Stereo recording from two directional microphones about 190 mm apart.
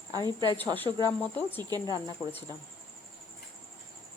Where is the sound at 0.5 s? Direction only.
10° left (ahead or behind).